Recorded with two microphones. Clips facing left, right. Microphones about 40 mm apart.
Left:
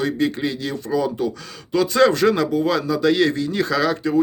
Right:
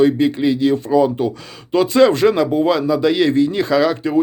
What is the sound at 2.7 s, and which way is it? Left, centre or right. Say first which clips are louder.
Speech: right 3 dB; centre.